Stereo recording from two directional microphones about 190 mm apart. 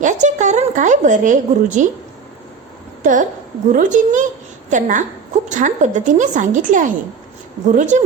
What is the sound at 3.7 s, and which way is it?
A woman's voice, 40° right (ahead or behind).